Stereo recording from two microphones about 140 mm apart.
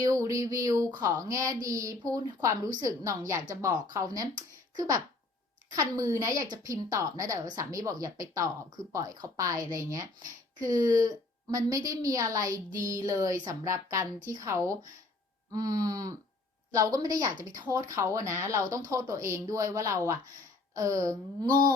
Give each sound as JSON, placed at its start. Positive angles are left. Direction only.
{"t": 0.0, "sound": "a woman's voice", "side_deg": -25}